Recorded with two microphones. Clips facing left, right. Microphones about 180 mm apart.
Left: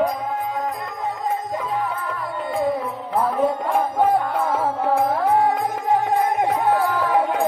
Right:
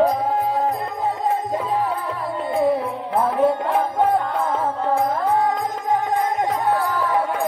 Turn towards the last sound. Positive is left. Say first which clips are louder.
# left 1 dB
turn(degrees=15)  # may be behind; listen again after turning